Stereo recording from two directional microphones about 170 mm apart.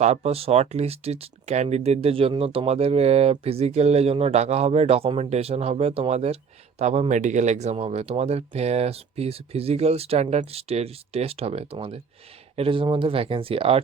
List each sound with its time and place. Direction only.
0.0 s speech: 40° right (ahead or behind)